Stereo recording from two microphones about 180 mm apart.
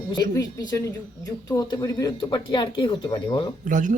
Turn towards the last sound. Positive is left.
turn(degrees=-45)  # may be behind; listen again after turning